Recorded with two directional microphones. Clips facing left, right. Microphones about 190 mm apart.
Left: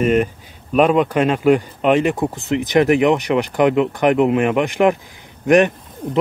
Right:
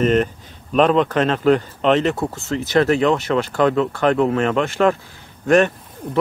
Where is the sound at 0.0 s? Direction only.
10° left (ahead or behind).